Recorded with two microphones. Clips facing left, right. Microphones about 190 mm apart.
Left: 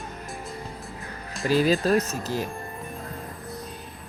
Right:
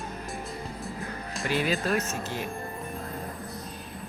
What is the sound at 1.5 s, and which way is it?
Speech, 35° left (ahead or behind).